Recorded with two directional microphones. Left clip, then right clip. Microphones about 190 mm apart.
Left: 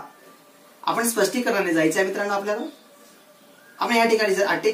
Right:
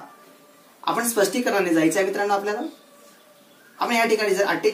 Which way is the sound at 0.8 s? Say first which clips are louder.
Even; centre (ahead or behind).